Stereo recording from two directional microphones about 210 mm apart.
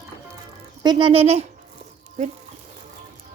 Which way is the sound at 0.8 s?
20° right (ahead or behind).